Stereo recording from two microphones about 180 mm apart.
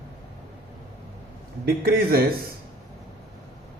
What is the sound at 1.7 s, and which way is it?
Speech, 60° right (ahead or behind).